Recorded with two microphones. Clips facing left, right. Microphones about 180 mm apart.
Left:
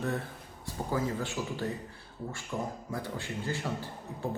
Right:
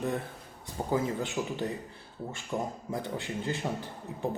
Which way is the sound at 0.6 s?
20° right (ahead or behind).